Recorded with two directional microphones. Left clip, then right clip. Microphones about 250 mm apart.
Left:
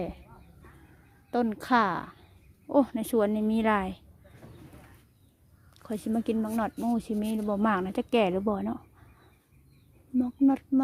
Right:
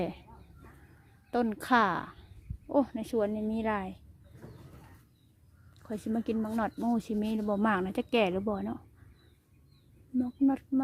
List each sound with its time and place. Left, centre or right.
0.0 s speech: centre
1.3 s speech: centre
5.8 s speech: centre
10.2 s speech: centre